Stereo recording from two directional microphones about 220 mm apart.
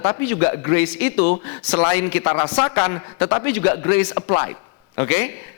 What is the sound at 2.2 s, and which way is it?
A man's voice, 20° left (ahead or behind).